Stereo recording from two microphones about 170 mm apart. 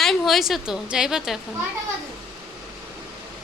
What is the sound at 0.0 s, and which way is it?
A woman's voice, centre (ahead or behind).